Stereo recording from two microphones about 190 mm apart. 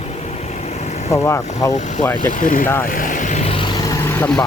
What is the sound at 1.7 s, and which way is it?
Speech, 40° left (ahead or behind).